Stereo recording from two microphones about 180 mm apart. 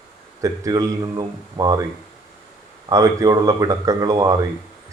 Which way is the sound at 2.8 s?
20° right (ahead or behind).